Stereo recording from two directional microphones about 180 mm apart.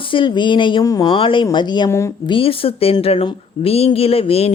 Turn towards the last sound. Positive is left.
turn(degrees=35)  # may be behind; listen again after turning